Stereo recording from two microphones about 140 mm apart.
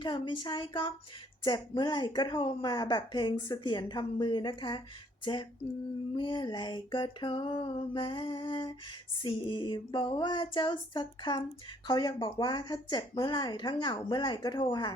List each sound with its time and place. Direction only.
0.0 s a woman's voice: 35° left (ahead or behind)
5.2 s a sound: 35° left (ahead or behind)
6.1 s a woman's voice: 35° left (ahead or behind)